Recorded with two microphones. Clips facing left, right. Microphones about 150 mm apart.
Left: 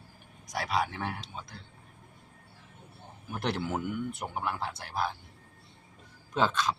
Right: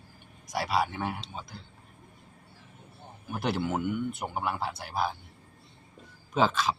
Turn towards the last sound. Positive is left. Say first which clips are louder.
# right 2 dB
turn(degrees=-5)  # may be behind; listen again after turning